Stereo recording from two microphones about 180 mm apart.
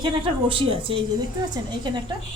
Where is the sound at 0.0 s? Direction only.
30° right (ahead or behind).